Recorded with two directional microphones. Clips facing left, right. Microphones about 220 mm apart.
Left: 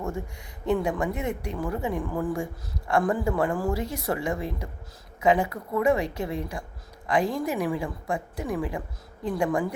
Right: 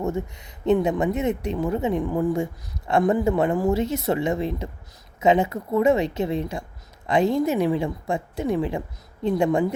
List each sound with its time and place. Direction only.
0.0 s speech: 20° right (ahead or behind)